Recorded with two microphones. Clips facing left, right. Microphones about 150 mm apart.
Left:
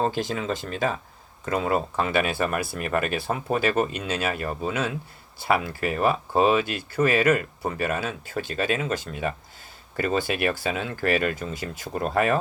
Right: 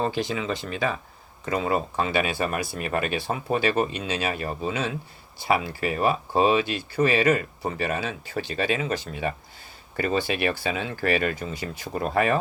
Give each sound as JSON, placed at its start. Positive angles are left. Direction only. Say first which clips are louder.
{"t": 0.0, "sound": "speech", "louder": "left 1 dB", "side_deg": 45}